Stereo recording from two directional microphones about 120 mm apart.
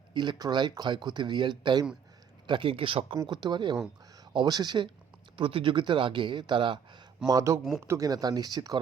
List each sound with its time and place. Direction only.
0.1 s speech: 40° right (ahead or behind)
2.5 s speech: 50° right (ahead or behind)
5.4 s speech: 45° right (ahead or behind)
7.3 s speech: 25° right (ahead or behind)